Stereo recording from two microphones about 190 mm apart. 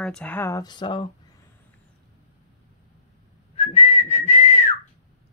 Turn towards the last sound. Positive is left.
turn(degrees=35)  # may be behind; listen again after turning